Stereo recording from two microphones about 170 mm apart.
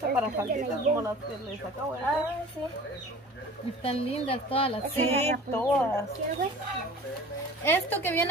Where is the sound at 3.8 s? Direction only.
35° left (ahead or behind).